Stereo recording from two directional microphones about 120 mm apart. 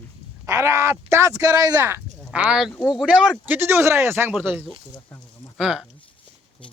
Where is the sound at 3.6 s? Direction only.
20° right (ahead or behind).